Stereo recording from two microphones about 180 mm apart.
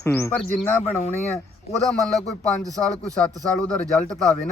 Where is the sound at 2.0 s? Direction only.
Centre (ahead or behind).